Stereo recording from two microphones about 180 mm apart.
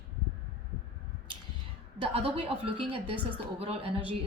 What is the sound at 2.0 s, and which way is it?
Speech, 30° right (ahead or behind).